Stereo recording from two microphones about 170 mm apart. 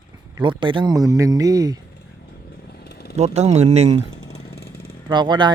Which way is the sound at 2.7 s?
70° left (ahead or behind).